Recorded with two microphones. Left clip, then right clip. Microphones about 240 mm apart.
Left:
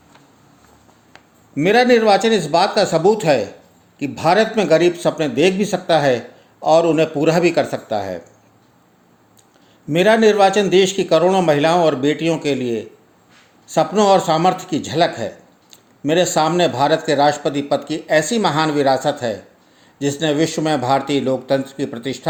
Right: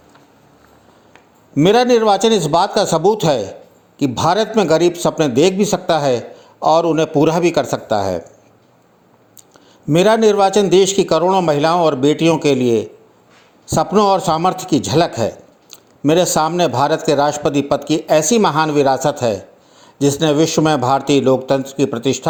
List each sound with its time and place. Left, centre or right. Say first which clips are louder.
1.5 s a man's voice: right 1 dB; right
9.8 s a man's voice: right 1 dB; right